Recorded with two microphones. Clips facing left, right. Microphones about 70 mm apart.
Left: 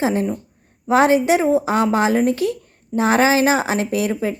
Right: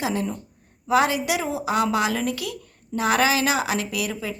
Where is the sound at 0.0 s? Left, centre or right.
Left.